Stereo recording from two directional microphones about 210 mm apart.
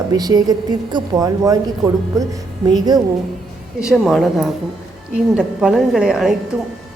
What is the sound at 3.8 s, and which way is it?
A woman's voice, centre (ahead or behind).